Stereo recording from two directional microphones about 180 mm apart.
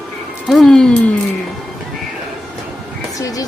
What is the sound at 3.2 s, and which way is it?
Speech, 20° left (ahead or behind).